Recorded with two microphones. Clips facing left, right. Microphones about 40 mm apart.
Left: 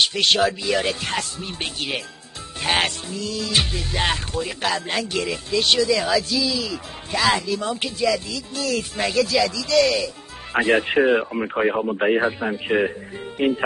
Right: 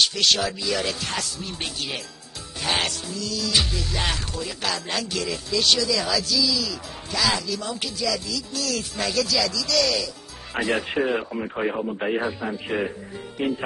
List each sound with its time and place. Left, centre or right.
0.0 s music: left
11.3 s speech: left
13.4 s music: left